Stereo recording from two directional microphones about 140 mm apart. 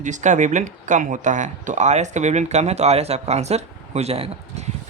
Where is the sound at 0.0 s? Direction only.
60° right (ahead or behind).